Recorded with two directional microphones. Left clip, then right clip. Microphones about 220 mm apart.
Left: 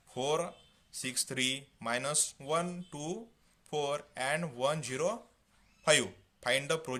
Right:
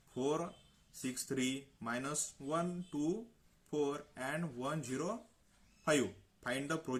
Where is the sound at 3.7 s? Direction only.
35° left (ahead or behind).